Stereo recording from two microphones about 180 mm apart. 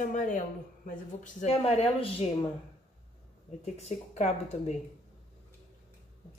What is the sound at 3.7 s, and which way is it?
Speech, 40° left (ahead or behind).